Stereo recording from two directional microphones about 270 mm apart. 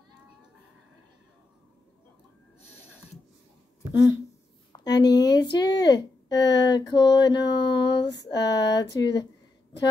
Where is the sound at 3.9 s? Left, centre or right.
Centre.